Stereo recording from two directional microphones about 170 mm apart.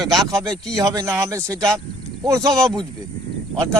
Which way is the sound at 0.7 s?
20° right (ahead or behind).